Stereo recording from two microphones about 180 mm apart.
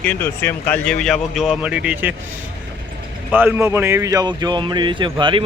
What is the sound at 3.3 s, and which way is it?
Speech, 10° right (ahead or behind).